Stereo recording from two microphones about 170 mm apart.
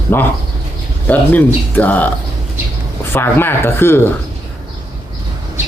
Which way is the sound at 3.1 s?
15° left (ahead or behind).